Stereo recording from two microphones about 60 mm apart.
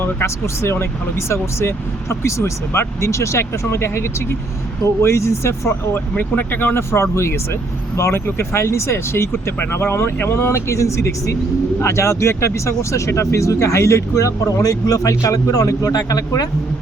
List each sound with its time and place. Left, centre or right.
0.0 s speech: left
5.9 s speech: left